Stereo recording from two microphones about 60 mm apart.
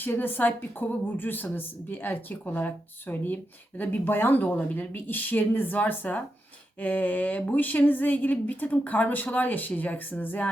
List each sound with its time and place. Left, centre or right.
0.0 s speech: left